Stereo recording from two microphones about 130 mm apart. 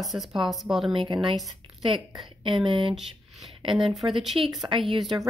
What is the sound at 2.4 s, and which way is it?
Speech, 40° right (ahead or behind).